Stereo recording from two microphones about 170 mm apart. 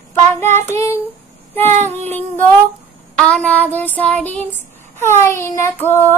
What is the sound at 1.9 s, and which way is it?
Child singing, 10° left (ahead or behind).